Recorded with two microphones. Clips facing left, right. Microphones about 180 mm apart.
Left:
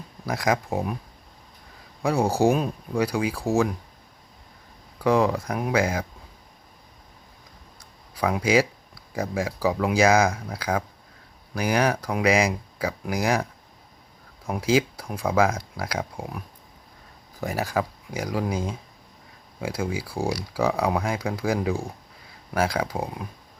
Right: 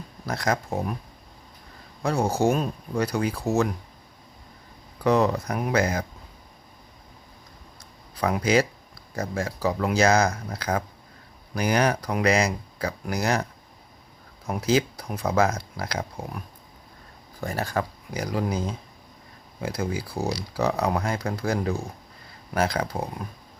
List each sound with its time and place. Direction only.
0.3 s speech: 10° left (ahead or behind)
2.0 s speech: centre (ahead or behind)
2.2 s speech: 35° left (ahead or behind)
2.5 s speech: centre (ahead or behind)
4.9 s speech: 5° left (ahead or behind)
8.2 s speech: 5° left (ahead or behind)
17.4 s speech: 5° left (ahead or behind)